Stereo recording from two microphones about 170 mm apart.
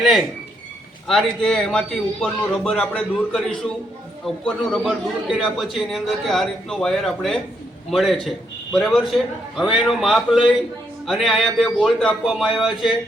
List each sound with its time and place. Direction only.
0.0 s a man's voice: centre (ahead or behind)